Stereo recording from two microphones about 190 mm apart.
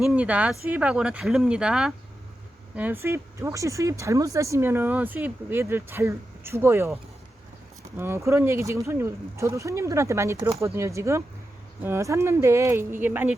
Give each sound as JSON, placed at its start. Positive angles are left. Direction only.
{"t": 0.0, "sound": "speech", "side_deg": -5}